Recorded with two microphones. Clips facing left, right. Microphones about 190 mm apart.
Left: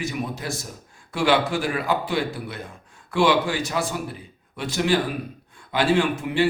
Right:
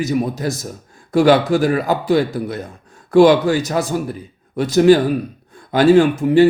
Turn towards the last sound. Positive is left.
turn(degrees=-40)  # may be behind; listen again after turning